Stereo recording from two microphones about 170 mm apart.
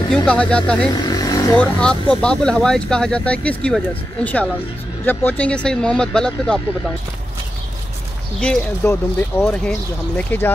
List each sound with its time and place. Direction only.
0.1 s speech: 5° left (ahead or behind)
0.8 s vehicle: 25° left (ahead or behind)
1.5 s speech: 5° left (ahead or behind)
8.4 s speech: 5° left (ahead or behind)